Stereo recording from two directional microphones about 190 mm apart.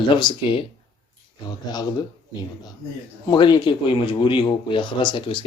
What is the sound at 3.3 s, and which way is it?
Speech, 20° left (ahead or behind).